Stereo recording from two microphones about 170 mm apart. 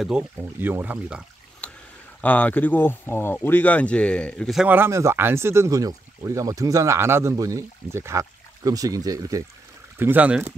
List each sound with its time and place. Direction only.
0.0 s speech: 5° right (ahead or behind)
1.6 s a sound: 5° left (ahead or behind)
2.2 s speech: 10° left (ahead or behind)
4.6 s speech: 15° right (ahead or behind)